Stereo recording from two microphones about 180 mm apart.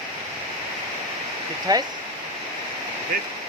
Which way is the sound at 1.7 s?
20° right (ahead or behind).